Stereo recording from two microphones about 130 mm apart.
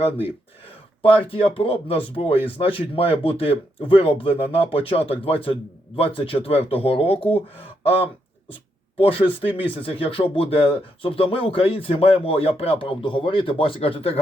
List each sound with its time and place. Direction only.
0.0 s speech: 45° left (ahead or behind)
9.0 s speech: 45° left (ahead or behind)